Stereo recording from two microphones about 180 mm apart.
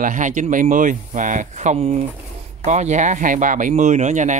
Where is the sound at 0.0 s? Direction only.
45° right (ahead or behind).